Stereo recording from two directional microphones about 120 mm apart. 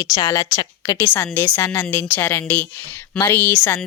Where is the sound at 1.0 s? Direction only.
15° left (ahead or behind).